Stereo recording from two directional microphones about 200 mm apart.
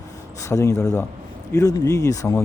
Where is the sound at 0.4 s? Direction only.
15° left (ahead or behind).